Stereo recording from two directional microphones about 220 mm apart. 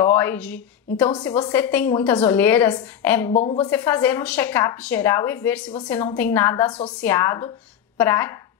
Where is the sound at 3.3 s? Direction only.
30° left (ahead or behind).